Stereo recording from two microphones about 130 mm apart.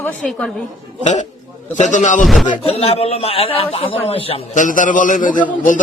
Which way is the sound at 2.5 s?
45° left (ahead or behind).